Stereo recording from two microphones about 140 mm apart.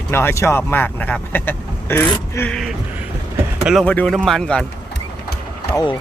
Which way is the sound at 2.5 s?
Centre (ahead or behind).